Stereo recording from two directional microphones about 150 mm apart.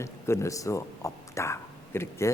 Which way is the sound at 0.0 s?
20° left (ahead or behind).